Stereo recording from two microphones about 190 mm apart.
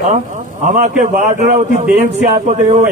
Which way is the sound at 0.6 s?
40° right (ahead or behind).